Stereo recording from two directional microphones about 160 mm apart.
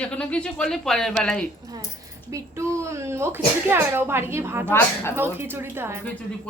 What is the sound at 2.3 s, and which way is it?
Speech, 20° right (ahead or behind).